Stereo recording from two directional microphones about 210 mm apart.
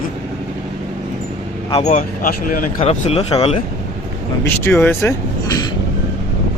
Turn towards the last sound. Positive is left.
turn(degrees=10)  # may be behind; listen again after turning